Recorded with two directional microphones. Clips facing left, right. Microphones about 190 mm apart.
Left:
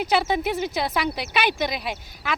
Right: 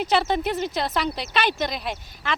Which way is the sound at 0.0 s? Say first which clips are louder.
Even; 10° left (ahead or behind).